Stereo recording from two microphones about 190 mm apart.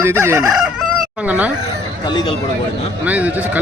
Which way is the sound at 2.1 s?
25° left (ahead or behind).